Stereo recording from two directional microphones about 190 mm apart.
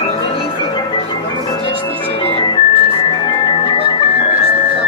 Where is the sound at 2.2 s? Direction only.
25° left (ahead or behind).